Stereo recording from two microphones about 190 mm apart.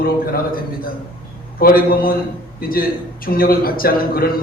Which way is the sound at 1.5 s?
50° left (ahead or behind).